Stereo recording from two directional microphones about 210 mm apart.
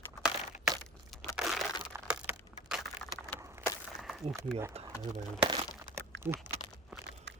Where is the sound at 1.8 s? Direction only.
5° right (ahead or behind).